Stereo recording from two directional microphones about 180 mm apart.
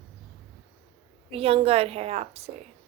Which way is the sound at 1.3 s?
35° right (ahead or behind).